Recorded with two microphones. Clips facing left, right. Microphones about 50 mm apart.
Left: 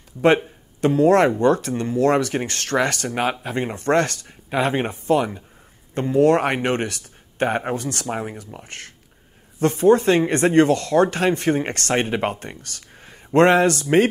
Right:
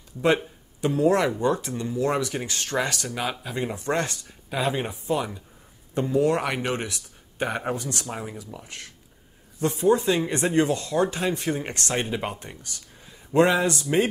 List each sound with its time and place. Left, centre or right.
0.8 s speech: left
8.1 s speech: left
8.6 s speech: left
9.6 s speech: left